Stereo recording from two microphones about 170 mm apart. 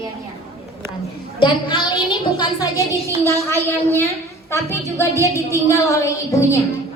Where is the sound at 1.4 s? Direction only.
30° left (ahead or behind).